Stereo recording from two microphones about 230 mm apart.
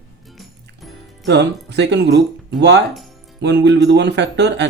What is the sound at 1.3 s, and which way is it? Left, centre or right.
Speech, right.